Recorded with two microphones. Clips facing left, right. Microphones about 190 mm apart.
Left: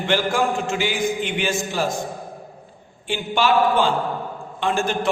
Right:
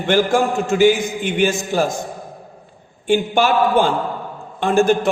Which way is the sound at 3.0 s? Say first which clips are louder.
Right 5 dB; 45° right (ahead or behind).